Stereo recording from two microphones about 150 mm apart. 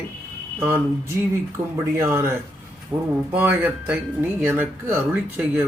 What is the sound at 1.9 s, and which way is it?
Speech, 20° right (ahead or behind).